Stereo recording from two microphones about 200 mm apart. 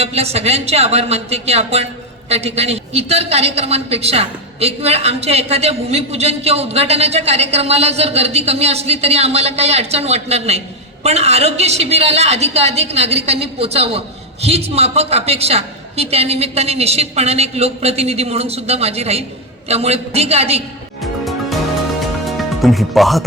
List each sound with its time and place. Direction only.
0.0 s a woman's voice: 30° right (ahead or behind)
21.0 s music: centre (ahead or behind)
22.3 s speech: centre (ahead or behind)